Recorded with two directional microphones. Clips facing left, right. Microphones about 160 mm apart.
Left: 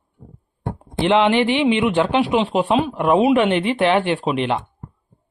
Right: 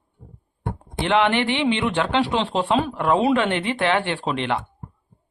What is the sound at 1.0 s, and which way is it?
Speech, 20° left (ahead or behind).